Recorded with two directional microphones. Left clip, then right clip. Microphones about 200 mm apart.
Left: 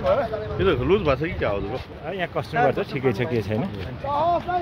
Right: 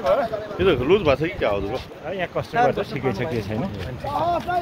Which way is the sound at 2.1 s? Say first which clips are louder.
Right 1 dB; 45° left (ahead or behind).